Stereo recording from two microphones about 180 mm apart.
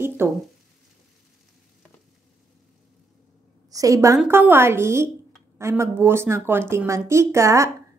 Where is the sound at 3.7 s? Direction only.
20° right (ahead or behind).